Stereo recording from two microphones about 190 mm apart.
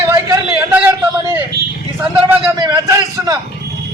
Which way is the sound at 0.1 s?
15° right (ahead or behind).